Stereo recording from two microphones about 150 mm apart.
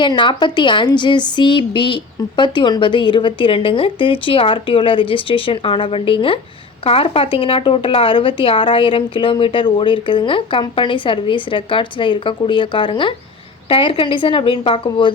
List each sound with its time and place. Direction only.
0.0 s speech: 30° left (ahead or behind)